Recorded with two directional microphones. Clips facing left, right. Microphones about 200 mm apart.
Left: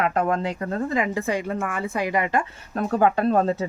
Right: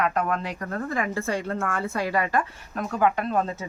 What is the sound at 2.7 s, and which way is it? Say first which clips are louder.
Speech: left 4 dB; 35° left (ahead or behind).